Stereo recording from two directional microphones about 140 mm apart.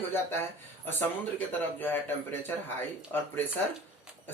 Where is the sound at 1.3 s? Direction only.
15° left (ahead or behind).